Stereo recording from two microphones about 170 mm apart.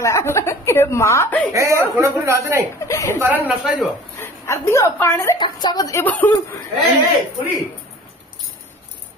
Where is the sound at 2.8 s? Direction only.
15° left (ahead or behind).